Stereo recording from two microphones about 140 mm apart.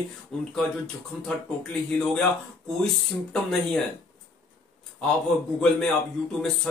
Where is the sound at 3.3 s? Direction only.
5° left (ahead or behind).